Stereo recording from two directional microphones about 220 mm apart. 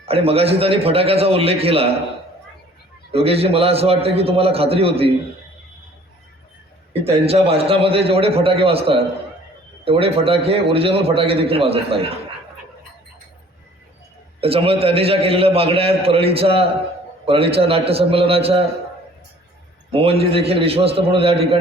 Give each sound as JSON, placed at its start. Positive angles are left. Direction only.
{"t": 0.0, "sound": "a man's voice", "side_deg": -25}
{"t": 3.1, "sound": "a man's voice", "side_deg": -25}
{"t": 7.3, "sound": "a man's voice", "side_deg": -25}
{"t": 14.4, "sound": "a man's voice", "side_deg": -25}
{"t": 19.9, "sound": "a man's voice", "side_deg": -25}